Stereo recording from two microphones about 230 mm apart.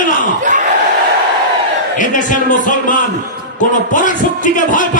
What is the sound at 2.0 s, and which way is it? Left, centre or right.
A man's voice, left.